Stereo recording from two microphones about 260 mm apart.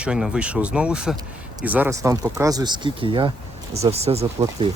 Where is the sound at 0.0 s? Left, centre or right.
Centre; by 4.7 s right.